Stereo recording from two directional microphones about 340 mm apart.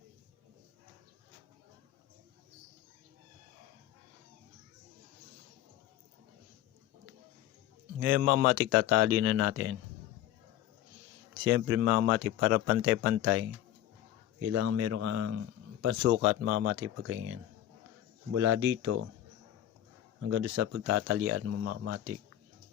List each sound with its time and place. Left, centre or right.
7.9 s speech: right
11.4 s speech: right
14.4 s speech: right
20.2 s speech: right